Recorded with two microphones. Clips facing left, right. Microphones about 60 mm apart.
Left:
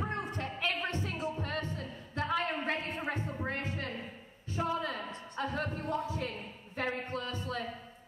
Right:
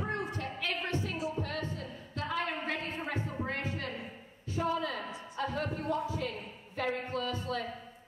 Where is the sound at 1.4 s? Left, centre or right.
Left.